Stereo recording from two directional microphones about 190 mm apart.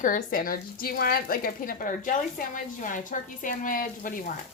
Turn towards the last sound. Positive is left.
turn(degrees=45)  # may be behind; listen again after turning